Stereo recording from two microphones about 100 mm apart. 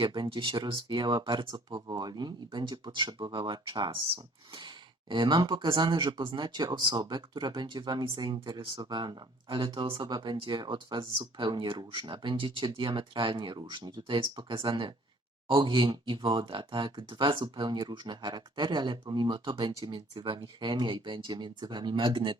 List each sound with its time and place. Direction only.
0.0 s speech: 50° right (ahead or behind)